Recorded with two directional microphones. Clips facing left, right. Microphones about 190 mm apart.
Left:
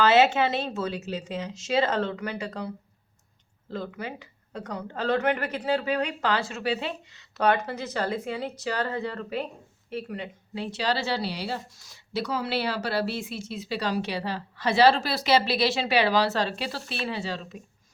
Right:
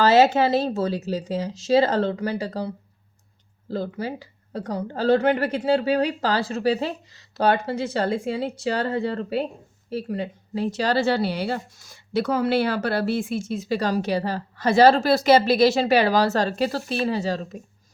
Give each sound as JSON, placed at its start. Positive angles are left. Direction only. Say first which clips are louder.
{"t": 0.0, "sound": "a woman's voice", "louder": "right 4 dB", "side_deg": -35}